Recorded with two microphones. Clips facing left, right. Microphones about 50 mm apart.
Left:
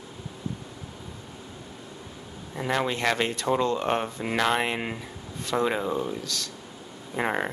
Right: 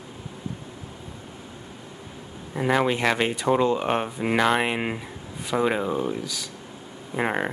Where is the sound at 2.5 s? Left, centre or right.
Centre.